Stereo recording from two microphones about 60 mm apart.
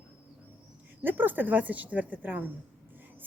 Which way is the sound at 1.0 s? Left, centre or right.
Right.